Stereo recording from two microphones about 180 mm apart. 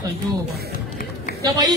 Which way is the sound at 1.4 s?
20° right (ahead or behind).